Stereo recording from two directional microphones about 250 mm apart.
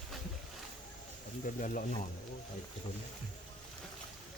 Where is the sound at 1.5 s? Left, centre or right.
Left.